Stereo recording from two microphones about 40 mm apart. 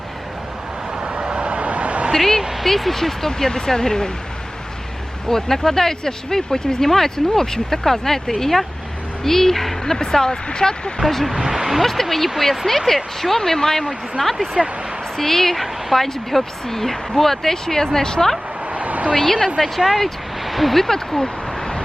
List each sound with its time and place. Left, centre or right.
1.0 s vehicle: right
1.5 s vehicle: right
2.1 s a woman's voice: centre
5.3 s speech: centre
11.0 s speech: centre
11.9 s speech: centre
18.7 s a sound: right
19.1 s speech: centre